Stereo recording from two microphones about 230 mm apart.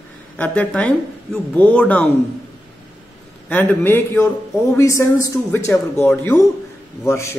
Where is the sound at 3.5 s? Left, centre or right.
Centre.